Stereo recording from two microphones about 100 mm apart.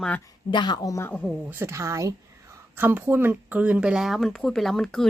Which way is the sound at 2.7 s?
20° right (ahead or behind).